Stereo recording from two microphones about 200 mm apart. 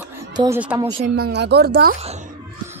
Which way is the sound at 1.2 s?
55° right (ahead or behind).